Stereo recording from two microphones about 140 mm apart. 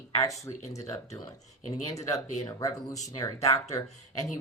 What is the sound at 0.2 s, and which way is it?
Speech, 25° left (ahead or behind).